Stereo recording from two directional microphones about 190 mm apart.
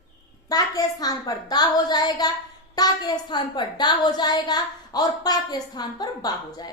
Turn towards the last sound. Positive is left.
turn(degrees=20)  # may be behind; listen again after turning